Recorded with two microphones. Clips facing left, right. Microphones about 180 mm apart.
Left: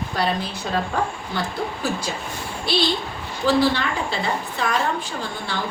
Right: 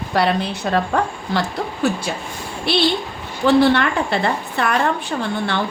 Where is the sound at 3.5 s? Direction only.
65° right (ahead or behind).